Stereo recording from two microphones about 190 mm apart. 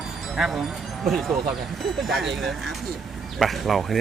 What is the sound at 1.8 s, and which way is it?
Speech, centre (ahead or behind).